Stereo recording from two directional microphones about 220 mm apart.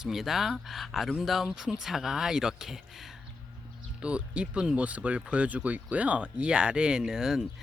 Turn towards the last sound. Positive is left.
turn(degrees=0)  # may be behind; listen again after turning